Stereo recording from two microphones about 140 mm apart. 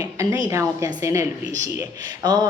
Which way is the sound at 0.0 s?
20° right (ahead or behind).